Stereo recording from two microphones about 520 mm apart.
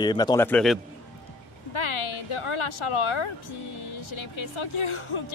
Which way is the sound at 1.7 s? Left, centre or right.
Left.